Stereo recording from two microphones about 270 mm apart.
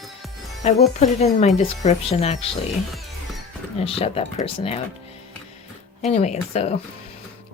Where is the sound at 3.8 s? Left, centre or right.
Left.